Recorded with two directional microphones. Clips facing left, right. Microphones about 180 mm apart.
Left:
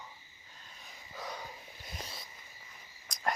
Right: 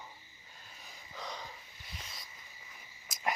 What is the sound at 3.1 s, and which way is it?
Cricket, 5° right (ahead or behind).